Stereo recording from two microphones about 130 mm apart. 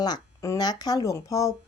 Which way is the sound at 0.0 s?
30° left (ahead or behind).